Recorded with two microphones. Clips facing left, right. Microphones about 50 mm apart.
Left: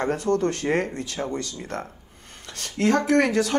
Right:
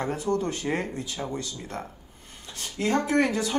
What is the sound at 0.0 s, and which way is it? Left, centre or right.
Speech, left.